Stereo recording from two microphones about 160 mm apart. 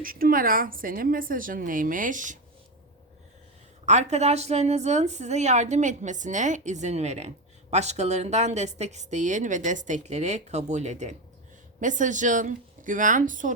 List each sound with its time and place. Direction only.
0.0 s a woman's voice: 60° right (ahead or behind)
3.8 s a woman's voice: 45° right (ahead or behind)